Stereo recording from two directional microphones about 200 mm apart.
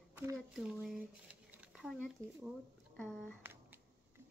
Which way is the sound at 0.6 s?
Centre (ahead or behind).